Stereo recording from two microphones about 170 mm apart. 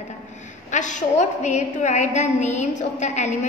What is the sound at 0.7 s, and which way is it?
A woman's voice, 45° left (ahead or behind).